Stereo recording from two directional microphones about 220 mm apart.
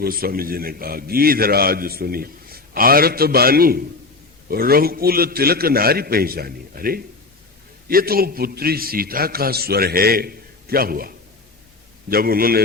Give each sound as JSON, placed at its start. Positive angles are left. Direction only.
{"t": 0.0, "sound": "a man's voice", "side_deg": -45}